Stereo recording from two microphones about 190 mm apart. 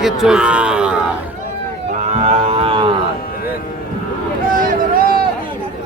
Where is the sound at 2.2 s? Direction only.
30° right (ahead or behind).